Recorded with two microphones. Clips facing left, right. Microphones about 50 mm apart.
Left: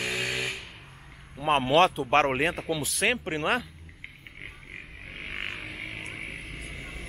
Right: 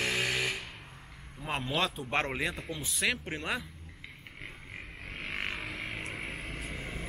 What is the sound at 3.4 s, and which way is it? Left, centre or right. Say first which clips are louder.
Speech: left 8 dB; left.